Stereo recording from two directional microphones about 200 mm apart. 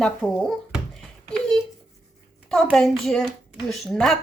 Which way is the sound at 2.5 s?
Centre (ahead or behind).